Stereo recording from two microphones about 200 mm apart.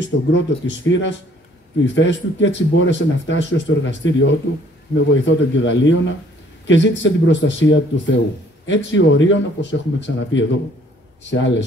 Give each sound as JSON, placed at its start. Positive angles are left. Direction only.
{"t": 0.0, "sound": "a man's voice", "side_deg": 65}